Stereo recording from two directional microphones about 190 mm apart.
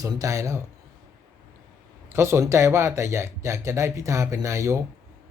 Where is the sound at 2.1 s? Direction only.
15° right (ahead or behind).